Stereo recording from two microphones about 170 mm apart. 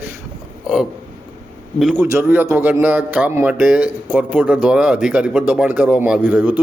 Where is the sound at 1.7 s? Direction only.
5° right (ahead or behind).